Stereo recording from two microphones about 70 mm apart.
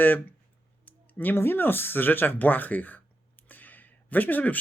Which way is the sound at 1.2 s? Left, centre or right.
Left.